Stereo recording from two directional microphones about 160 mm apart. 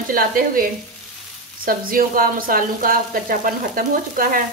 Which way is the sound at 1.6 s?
65° right (ahead or behind).